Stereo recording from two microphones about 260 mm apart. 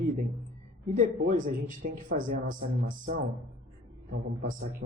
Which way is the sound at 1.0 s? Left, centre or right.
Right.